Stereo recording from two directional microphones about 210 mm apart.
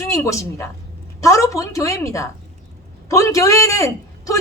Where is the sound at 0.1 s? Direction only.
15° left (ahead or behind).